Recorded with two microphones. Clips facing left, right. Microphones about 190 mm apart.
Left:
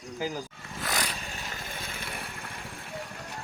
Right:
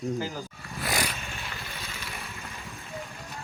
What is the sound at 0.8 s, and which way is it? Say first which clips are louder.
Vehicle: right 3 dB; 10° right (ahead or behind).